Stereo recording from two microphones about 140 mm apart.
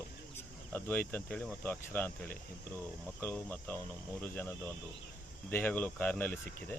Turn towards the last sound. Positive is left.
turn(degrees=10)  # may be behind; listen again after turning